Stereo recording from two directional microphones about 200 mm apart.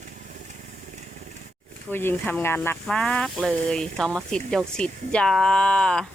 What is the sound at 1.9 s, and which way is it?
Speech, 10° left (ahead or behind).